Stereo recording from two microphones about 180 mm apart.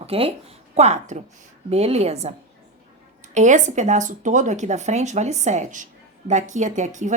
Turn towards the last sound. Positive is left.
turn(degrees=-40)  # may be behind; listen again after turning